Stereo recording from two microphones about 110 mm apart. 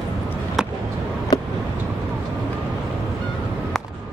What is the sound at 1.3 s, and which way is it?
Vehicle, 35° left (ahead or behind).